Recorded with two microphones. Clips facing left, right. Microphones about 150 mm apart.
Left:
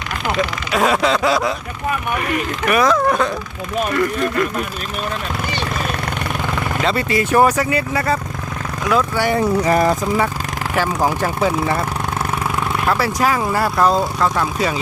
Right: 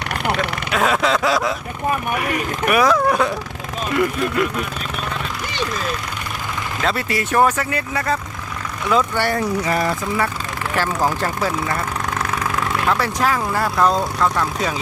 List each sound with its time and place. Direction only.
0.7 s speech: centre (ahead or behind)
6.8 s speech: centre (ahead or behind)
9.6 s speech: 40° left (ahead or behind)
10.8 s speech: 15° left (ahead or behind)
12.8 s speech: 10° left (ahead or behind)